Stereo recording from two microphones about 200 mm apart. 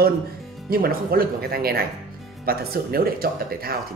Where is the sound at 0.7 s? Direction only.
45° right (ahead or behind).